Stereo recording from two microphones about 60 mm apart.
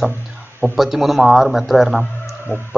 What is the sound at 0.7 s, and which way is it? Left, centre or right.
Speech, centre.